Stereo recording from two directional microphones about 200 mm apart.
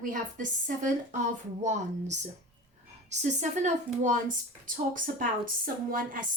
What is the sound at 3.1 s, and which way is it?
A woman's voice, 35° right (ahead or behind).